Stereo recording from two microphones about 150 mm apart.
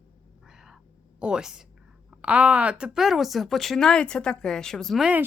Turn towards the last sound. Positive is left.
turn(degrees=-5)  # may be behind; listen again after turning